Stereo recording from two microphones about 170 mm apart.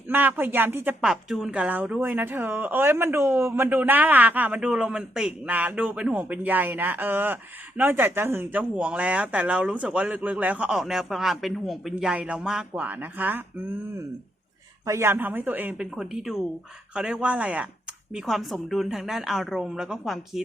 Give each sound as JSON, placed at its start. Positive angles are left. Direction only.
{"t": 0.1, "sound": "a woman's voice", "side_deg": -10}
{"t": 14.8, "sound": "a woman's voice", "side_deg": -15}